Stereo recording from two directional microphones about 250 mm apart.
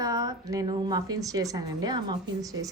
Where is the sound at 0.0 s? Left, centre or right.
Centre.